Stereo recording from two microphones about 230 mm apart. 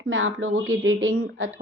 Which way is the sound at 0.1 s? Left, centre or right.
Right.